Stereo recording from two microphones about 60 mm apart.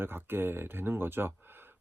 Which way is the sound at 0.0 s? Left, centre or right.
Right.